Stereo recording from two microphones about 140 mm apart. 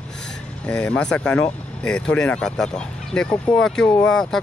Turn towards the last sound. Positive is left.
turn(degrees=5)  # may be behind; listen again after turning